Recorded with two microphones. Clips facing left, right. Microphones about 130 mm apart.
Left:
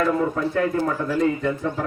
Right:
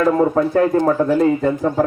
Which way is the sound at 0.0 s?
45° right (ahead or behind).